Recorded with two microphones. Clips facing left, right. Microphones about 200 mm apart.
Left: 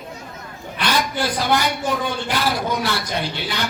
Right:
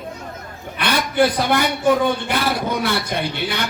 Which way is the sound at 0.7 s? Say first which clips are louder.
Right 4 dB; 55° right (ahead or behind).